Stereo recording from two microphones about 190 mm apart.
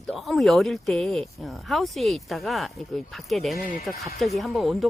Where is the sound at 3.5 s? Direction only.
45° left (ahead or behind).